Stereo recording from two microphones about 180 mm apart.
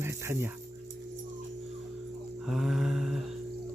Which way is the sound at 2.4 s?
Centre (ahead or behind).